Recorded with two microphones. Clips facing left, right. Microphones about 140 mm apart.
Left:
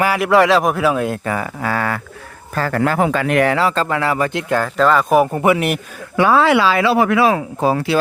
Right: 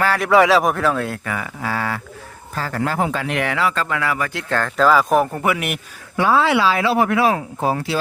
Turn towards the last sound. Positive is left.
turn(degrees=90)